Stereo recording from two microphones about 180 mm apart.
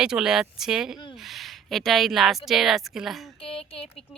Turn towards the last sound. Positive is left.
turn(degrees=30)  # may be behind; listen again after turning